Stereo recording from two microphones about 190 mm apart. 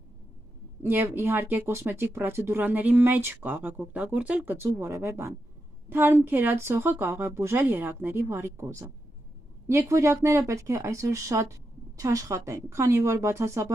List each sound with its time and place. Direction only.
0.8 s a woman's voice: 10° right (ahead or behind)